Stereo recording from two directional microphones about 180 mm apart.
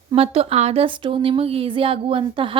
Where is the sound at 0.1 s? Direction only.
30° right (ahead or behind).